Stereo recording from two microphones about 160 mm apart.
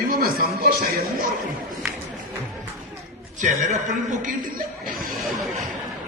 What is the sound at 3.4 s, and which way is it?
A man's voice, 50° right (ahead or behind).